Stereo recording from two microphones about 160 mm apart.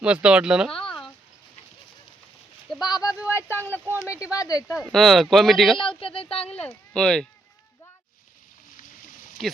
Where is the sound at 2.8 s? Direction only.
25° left (ahead or behind).